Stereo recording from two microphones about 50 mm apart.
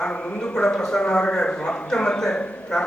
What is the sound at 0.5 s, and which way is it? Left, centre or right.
Speech, centre.